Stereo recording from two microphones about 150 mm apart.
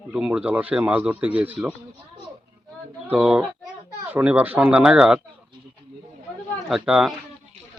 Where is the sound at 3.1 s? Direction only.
5° right (ahead or behind).